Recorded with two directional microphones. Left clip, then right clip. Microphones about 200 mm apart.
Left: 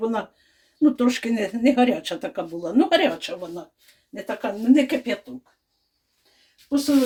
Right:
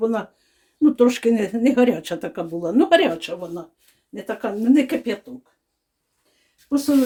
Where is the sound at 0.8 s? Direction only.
50° right (ahead or behind).